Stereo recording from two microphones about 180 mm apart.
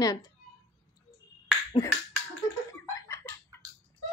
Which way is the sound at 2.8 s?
15° left (ahead or behind).